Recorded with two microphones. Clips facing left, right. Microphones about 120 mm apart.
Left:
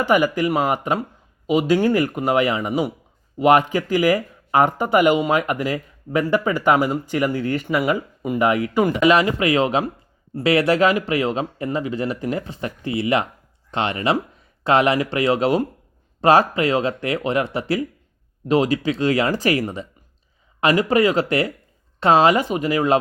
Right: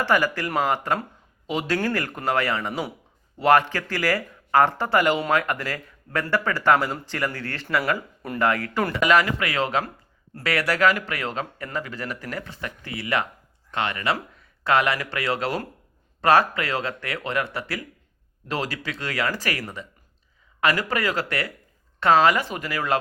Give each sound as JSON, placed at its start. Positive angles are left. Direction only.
{"t": 0.0, "sound": "speech", "side_deg": 15}